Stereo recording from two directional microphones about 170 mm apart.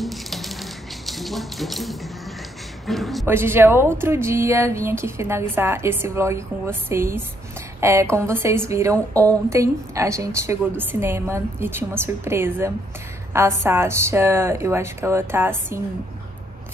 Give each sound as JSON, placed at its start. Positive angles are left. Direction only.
{"t": 0.0, "sound": "a sound", "side_deg": 0}
{"t": 2.9, "sound": "a woman's voice", "side_deg": 0}
{"t": 3.3, "sound": "a woman's voice", "side_deg": -15}